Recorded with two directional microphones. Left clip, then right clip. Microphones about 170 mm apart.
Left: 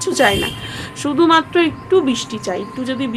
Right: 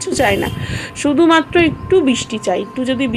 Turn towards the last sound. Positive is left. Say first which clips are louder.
# right 4 dB
turn(degrees=-15)  # may be behind; listen again after turning